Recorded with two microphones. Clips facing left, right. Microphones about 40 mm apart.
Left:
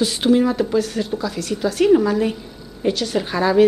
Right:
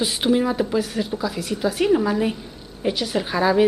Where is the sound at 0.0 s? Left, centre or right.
Centre.